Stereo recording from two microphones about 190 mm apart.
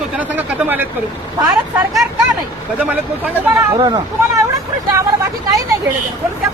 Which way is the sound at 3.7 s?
20° right (ahead or behind).